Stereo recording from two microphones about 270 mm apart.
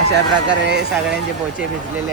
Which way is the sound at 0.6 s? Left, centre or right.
Right.